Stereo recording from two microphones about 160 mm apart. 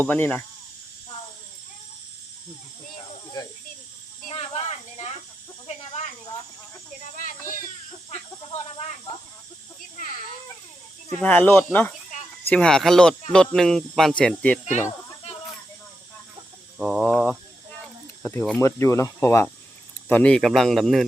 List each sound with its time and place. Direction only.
0.0 s speech: 10° left (ahead or behind)
4.3 s a sound: 40° left (ahead or behind)
7.0 s a sound: 55° left (ahead or behind)
11.2 s speech: 10° left (ahead or behind)
16.7 s speech: centre (ahead or behind)
18.2 s speech: 15° left (ahead or behind)